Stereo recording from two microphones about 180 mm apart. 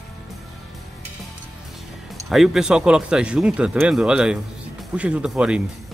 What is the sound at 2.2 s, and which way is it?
Speech, centre (ahead or behind).